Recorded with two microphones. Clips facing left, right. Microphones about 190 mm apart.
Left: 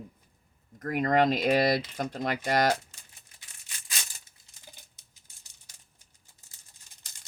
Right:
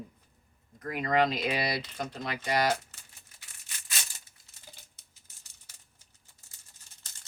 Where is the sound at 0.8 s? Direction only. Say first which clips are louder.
Left 3 dB; 45° left (ahead or behind).